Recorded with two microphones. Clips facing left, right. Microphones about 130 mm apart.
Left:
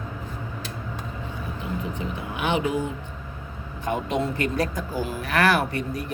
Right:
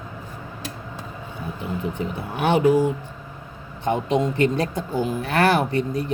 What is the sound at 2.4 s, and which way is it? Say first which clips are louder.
Speech: right 7 dB; 40° right (ahead or behind).